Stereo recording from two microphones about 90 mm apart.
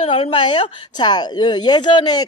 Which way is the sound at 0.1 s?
90° left.